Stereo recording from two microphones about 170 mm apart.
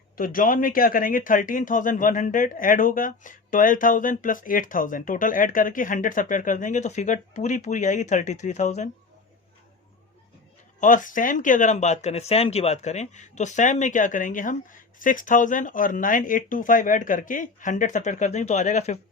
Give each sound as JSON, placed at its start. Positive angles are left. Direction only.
{"t": 0.2, "sound": "speech", "side_deg": 55}
{"t": 10.8, "sound": "speech", "side_deg": 50}